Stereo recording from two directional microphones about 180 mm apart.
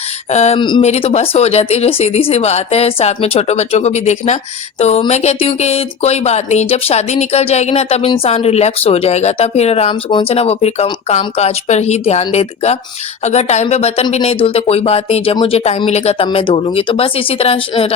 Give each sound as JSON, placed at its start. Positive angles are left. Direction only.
{"t": 0.3, "sound": "speech", "side_deg": 40}
{"t": 0.6, "sound": "speech", "side_deg": 25}